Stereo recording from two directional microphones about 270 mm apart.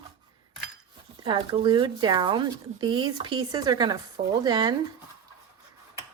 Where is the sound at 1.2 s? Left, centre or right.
Centre.